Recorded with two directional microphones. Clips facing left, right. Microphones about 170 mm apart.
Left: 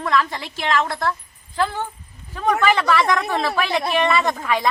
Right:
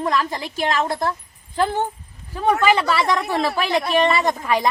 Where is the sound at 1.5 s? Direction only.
20° right (ahead or behind).